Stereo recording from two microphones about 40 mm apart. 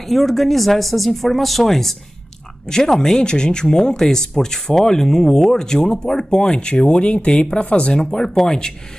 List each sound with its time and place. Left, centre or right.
0.1 s speech: centre